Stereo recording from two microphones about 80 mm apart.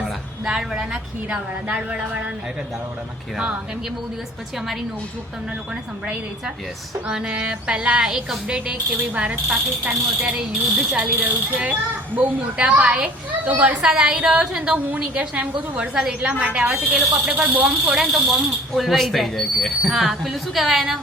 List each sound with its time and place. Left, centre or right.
0.0 s a sound: centre
1.3 s speech: centre
3.3 s speech: centre
7.1 s speech: centre
11.2 s a child's voice: centre